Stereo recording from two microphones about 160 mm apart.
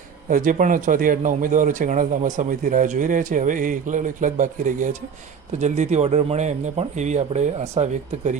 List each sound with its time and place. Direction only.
0.3 s a man's voice: 55° right (ahead or behind)